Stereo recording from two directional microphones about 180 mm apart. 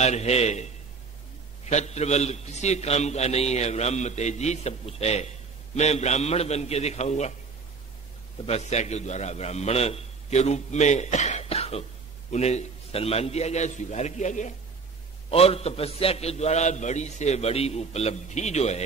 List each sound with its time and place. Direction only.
0.0 s a man's voice: 35° left (ahead or behind)
8.5 s a man's voice: 35° left (ahead or behind)